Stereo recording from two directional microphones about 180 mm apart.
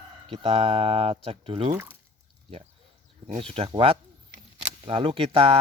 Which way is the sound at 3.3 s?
35° right (ahead or behind).